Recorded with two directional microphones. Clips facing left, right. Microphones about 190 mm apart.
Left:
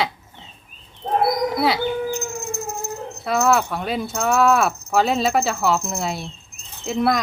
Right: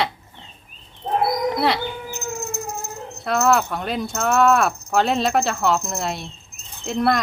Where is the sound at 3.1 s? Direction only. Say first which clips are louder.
Even; centre (ahead or behind).